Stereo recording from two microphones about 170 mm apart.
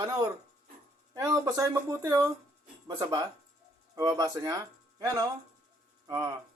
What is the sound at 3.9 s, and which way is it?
A man's voice, 25° right (ahead or behind).